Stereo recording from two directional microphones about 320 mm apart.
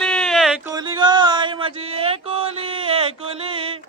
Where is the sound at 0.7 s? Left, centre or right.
Centre.